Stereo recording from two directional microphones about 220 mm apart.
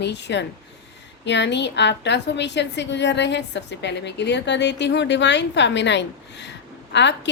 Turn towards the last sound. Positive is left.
turn(degrees=55)  # may be behind; listen again after turning